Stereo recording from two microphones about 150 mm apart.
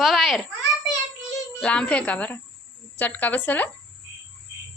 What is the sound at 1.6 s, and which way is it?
A child's voice, 5° left (ahead or behind).